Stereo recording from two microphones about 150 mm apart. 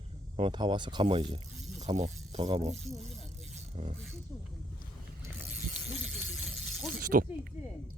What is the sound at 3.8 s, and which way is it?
Speech, 50° right (ahead or behind).